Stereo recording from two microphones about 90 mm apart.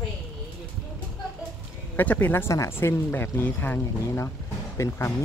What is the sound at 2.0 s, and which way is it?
Speech, 20° left (ahead or behind).